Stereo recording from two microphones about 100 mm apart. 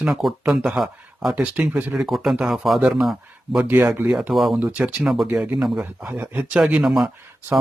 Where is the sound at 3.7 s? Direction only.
20° right (ahead or behind).